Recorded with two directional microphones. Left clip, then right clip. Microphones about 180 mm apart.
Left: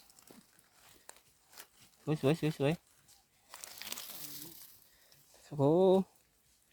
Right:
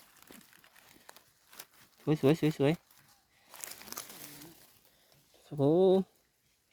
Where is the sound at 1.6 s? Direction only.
35° right (ahead or behind).